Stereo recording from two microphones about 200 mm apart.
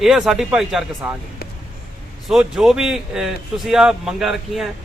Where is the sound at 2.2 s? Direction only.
Centre (ahead or behind).